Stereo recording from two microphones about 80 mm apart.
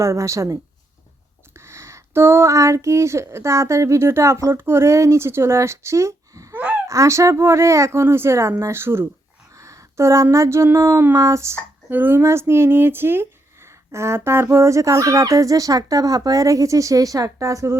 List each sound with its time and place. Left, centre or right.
0.0 s speech: right
6.5 s gasp: right
6.8 s speech: right
9.5 s a sound: right
10.3 s speech: right
11.9 s speech: right